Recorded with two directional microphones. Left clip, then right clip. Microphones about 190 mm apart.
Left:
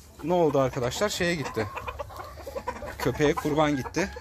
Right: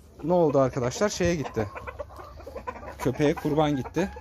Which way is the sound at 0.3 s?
25° right (ahead or behind).